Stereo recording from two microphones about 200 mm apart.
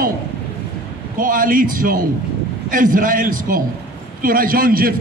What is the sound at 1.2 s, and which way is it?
A man's voice, 45° right (ahead or behind).